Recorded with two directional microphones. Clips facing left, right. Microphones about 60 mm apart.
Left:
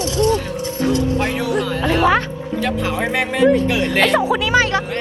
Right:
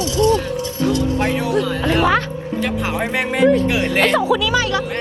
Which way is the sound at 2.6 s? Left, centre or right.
Right.